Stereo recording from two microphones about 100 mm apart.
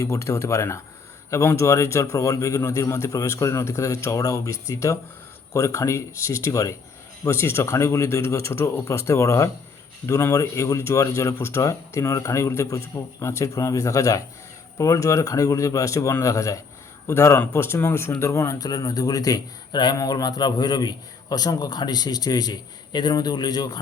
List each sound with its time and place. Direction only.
0.0 s speech: 30° left (ahead or behind)